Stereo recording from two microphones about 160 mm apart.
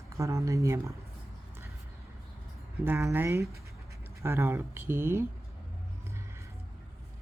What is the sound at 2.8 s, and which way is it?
Speech, 15° right (ahead or behind).